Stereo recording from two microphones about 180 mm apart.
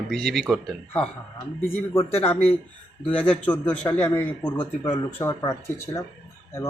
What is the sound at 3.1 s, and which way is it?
A man's voice, 10° left (ahead or behind).